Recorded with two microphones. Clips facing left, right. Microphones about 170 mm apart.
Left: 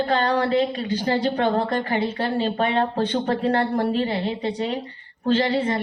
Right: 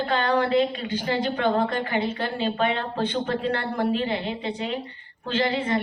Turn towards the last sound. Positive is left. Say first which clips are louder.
# left 4 dB
turn(degrees=35)  # may be behind; listen again after turning